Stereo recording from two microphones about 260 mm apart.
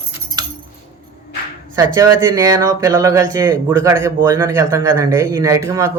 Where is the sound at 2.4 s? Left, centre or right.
Centre.